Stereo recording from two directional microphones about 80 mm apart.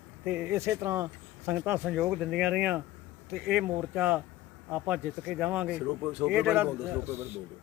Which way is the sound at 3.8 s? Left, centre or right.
Right.